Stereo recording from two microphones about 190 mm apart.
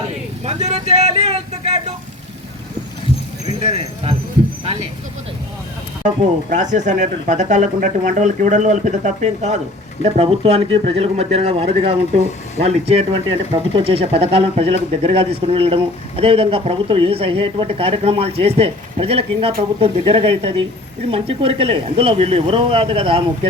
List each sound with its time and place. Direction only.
0.4 s vehicle: 35° right (ahead or behind)
3.4 s speech: 30° right (ahead or behind)
6.0 s speech: 40° right (ahead or behind)